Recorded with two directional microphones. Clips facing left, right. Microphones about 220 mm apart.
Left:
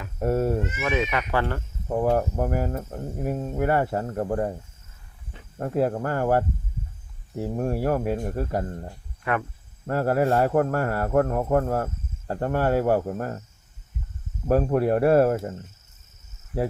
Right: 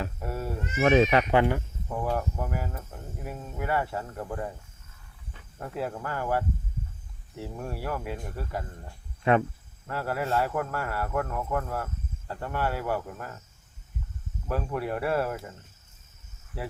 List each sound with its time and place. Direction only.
0.2 s cat: 45° left (ahead or behind)
0.8 s speech: 35° right (ahead or behind)
1.3 s speech: 15° right (ahead or behind)
1.9 s speech: 45° left (ahead or behind)
5.5 s speech: 45° left (ahead or behind)
9.3 s speech: 25° right (ahead or behind)
9.8 s speech: 45° left (ahead or behind)
14.4 s speech: 45° left (ahead or behind)